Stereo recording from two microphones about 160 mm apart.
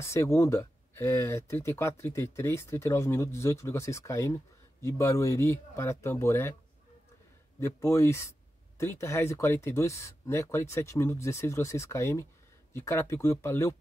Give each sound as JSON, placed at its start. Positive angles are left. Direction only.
{"t": 0.0, "sound": "speech", "side_deg": 15}
{"t": 7.6, "sound": "speech", "side_deg": 15}